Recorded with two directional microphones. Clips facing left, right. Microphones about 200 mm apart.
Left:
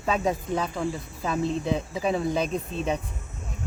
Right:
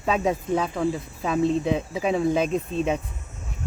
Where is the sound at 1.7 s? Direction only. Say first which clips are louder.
Right 2 dB; 15° right (ahead or behind).